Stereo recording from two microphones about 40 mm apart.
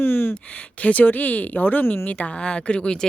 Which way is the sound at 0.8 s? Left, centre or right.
Left.